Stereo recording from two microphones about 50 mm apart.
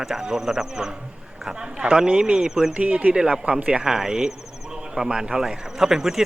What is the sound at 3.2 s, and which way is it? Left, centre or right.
Speech, centre.